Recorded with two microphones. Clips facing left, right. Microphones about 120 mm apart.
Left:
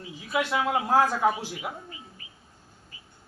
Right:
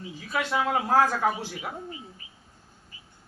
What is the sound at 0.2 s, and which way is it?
Speech, 15° left (ahead or behind).